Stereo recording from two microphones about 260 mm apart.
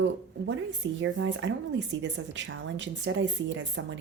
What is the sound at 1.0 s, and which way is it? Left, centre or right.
Speech, right.